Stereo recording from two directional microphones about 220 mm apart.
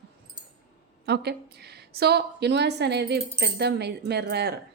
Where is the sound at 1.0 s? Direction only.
50° right (ahead or behind).